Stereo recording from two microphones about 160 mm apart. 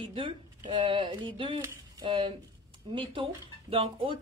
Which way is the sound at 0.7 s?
35° right (ahead or behind).